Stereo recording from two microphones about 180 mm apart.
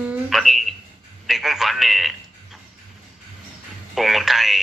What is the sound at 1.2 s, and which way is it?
Telephone, centre (ahead or behind).